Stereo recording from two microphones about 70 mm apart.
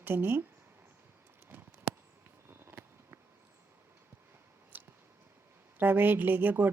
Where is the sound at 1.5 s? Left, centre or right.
Right.